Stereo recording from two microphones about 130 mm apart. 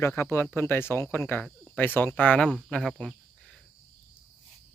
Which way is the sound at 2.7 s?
5° left (ahead or behind).